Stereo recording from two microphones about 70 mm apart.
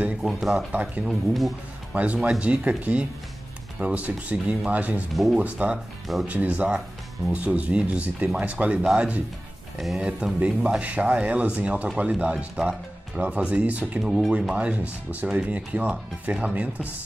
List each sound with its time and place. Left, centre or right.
0.2 s speech: centre
0.7 s speech: right
1.0 s speech: centre
2.2 s speech: centre
14.0 s speech: centre
14.5 s speech: centre